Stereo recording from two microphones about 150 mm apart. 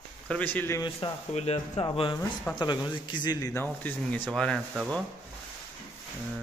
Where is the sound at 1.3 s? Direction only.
45° left (ahead or behind).